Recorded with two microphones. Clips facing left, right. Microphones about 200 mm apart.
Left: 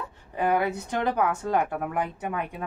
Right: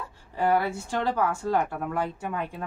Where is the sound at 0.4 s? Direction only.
20° left (ahead or behind).